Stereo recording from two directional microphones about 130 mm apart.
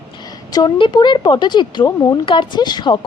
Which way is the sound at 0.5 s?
35° left (ahead or behind).